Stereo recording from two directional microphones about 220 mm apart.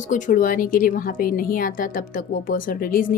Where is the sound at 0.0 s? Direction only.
35° left (ahead or behind).